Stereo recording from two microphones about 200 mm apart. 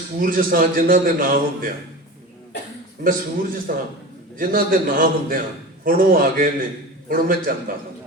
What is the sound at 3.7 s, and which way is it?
A man's voice, 45° right (ahead or behind).